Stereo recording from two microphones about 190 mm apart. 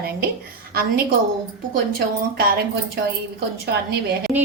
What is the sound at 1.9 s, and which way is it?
A woman's voice, 55° right (ahead or behind).